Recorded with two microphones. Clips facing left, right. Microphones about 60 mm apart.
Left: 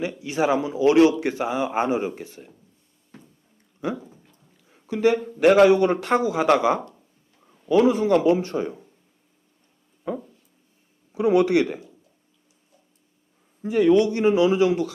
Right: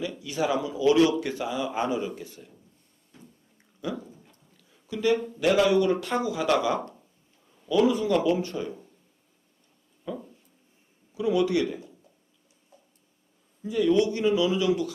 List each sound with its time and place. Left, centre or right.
0.1 s speech: left
3.9 s dog: centre
4.7 s a man's voice: left
11.1 s a man's voice: left
11.3 s a man's voice: left
13.6 s a man's voice: left
13.9 s speech: left